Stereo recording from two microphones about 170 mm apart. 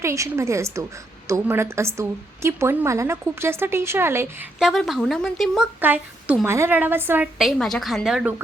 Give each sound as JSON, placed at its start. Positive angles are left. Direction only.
{"t": 0.0, "sound": "a woman's voice", "side_deg": -15}
{"t": 4.6, "sound": "a woman's voice", "side_deg": 0}
{"t": 7.3, "sound": "speech", "side_deg": 0}